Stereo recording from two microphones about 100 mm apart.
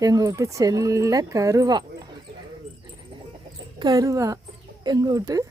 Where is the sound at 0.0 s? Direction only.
35° right (ahead or behind).